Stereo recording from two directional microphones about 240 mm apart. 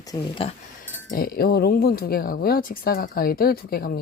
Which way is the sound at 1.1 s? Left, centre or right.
Left.